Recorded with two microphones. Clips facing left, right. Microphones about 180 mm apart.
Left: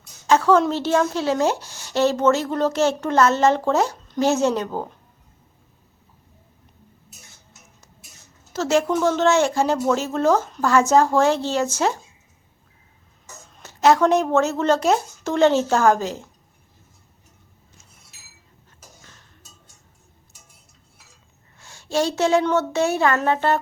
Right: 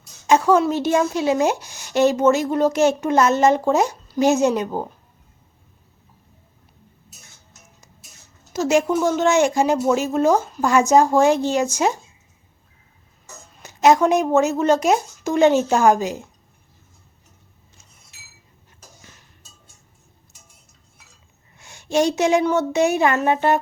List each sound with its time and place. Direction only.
0.3 s a woman's voice: 15° right (ahead or behind)
8.5 s a woman's voice: 15° right (ahead or behind)
13.6 s a woman's voice: 15° right (ahead or behind)
21.6 s a woman's voice: 15° right (ahead or behind)